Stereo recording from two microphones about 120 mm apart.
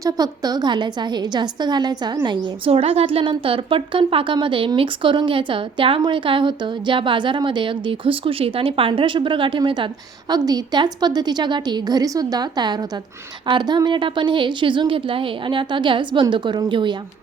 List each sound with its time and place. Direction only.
0.0 s a woman's voice: 30° right (ahead or behind)
2.6 s a woman's voice: 55° right (ahead or behind)